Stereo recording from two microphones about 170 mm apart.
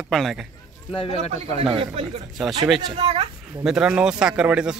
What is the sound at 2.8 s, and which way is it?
Speech, 25° right (ahead or behind).